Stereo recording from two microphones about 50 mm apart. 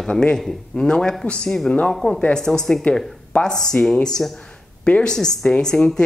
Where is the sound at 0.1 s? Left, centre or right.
Centre.